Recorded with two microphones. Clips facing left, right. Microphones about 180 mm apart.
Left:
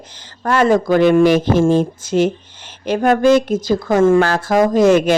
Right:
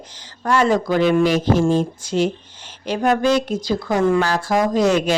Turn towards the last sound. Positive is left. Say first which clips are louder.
# left 5 dB
turn(degrees=55)  # may be behind; listen again after turning